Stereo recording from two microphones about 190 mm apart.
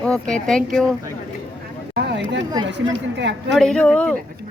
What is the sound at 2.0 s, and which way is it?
A woman's voice, 65° right (ahead or behind).